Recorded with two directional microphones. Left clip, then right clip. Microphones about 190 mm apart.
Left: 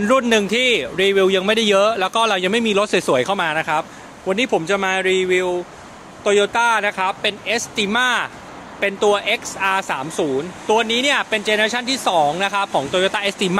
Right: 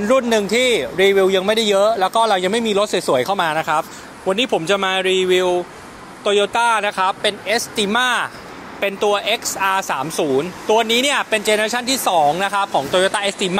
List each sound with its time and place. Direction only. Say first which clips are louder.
0.0 s a man's voice: even; 20° left (ahead or behind)
3.3 s speech: right 1 dB; centre (ahead or behind)
8.7 s speech: left 1 dB; 10° right (ahead or behind); by 13.6 s 10° left (ahead or behind)